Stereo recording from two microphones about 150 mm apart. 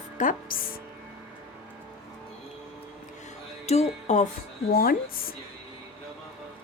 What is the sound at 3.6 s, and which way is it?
Speech, 45° left (ahead or behind).